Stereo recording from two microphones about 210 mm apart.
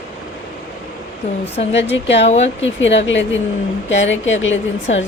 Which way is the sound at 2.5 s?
65° left (ahead or behind).